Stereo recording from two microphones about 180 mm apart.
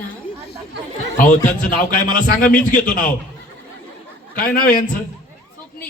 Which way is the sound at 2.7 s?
50° left (ahead or behind).